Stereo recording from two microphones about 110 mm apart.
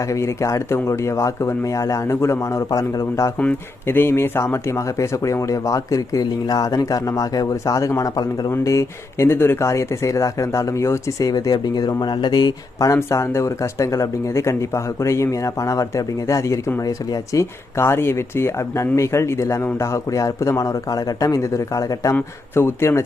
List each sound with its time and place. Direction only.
0.1 s speech: 30° left (ahead or behind)